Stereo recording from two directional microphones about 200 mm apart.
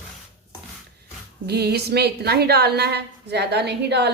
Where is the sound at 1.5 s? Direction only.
55° right (ahead or behind).